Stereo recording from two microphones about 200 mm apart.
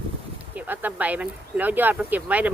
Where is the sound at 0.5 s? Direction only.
10° right (ahead or behind).